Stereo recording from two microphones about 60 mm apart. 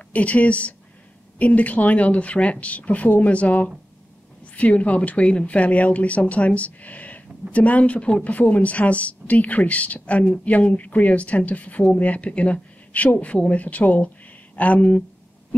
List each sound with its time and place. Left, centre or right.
0.1 s a woman's voice: left